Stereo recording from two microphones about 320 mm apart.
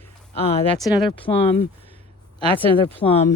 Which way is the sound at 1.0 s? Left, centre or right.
Centre.